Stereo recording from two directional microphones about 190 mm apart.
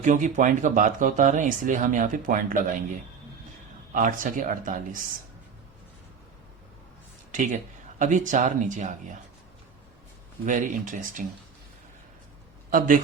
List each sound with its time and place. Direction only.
0.0 s speech: 40° right (ahead or behind)
3.9 s speech: 45° right (ahead or behind)
7.3 s speech: 40° right (ahead or behind)
10.4 s speech: 45° right (ahead or behind)
12.7 s speech: 45° right (ahead or behind)